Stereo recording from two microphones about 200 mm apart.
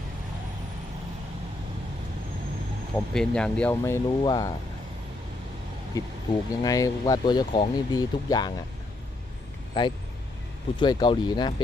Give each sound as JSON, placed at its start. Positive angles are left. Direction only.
{"t": 2.9, "sound": "speech", "side_deg": 5}
{"t": 4.2, "sound": "speech", "side_deg": 20}
{"t": 6.0, "sound": "speech", "side_deg": 15}
{"t": 9.7, "sound": "speech", "side_deg": 20}